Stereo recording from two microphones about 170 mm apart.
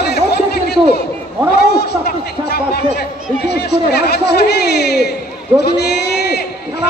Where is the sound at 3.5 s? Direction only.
75° left (ahead or behind).